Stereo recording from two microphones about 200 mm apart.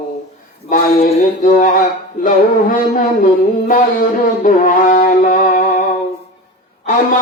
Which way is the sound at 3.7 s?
40° left (ahead or behind).